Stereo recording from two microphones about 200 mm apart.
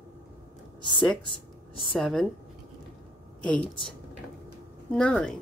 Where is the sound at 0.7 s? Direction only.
25° left (ahead or behind).